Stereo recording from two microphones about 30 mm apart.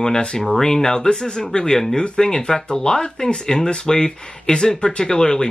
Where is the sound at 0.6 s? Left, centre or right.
Centre.